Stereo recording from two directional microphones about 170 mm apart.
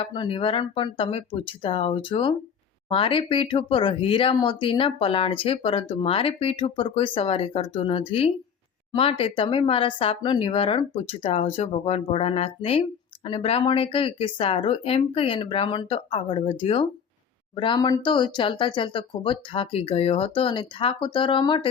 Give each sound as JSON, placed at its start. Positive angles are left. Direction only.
{"t": 0.0, "sound": "speech", "side_deg": 30}